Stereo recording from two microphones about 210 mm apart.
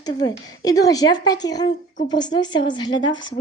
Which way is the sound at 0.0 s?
20° left (ahead or behind).